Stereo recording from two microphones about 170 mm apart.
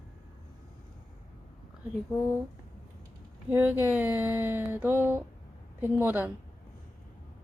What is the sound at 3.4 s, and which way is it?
Speech, 10° right (ahead or behind).